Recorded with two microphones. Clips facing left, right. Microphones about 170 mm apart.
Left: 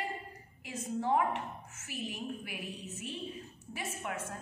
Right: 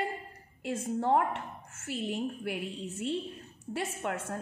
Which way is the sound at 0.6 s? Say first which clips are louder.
Right 5 dB; 65° right (ahead or behind).